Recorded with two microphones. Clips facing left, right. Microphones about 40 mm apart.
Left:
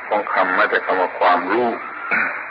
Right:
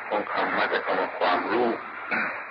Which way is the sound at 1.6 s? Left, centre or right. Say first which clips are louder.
Left 6 dB; left.